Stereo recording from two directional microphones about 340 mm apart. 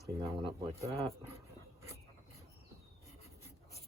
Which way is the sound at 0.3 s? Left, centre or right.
Centre.